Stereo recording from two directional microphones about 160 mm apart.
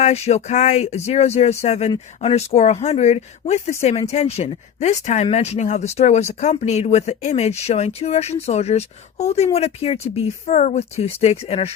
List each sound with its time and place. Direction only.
0.0 s speech: 40° left (ahead or behind)